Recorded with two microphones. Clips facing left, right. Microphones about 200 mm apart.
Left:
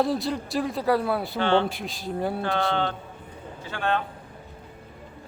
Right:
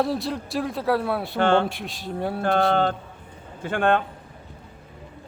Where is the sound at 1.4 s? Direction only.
50° right (ahead or behind).